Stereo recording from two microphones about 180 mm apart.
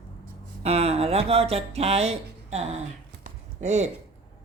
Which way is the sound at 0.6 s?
35° right (ahead or behind).